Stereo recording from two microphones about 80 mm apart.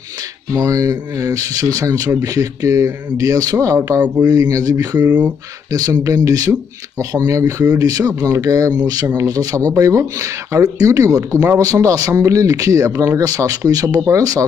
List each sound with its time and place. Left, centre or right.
0.6 s speech: right
4.9 s speech: centre
5.7 s speech: right